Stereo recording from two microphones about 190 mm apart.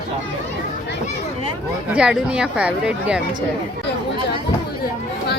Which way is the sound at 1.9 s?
5° right (ahead or behind).